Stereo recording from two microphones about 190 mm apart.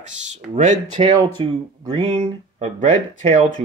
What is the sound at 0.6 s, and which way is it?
Speech, 35° right (ahead or behind).